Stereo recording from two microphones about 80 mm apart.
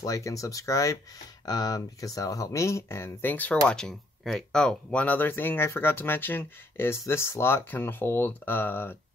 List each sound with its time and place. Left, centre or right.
0.0 s speech: left
1.4 s speech: left
3.6 s speech: centre
5.0 s speech: left